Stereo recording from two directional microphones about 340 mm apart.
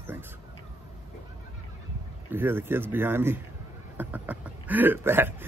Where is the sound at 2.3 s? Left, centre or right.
Centre.